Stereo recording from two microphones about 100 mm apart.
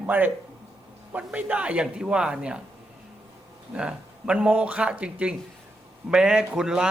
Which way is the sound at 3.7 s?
10° right (ahead or behind).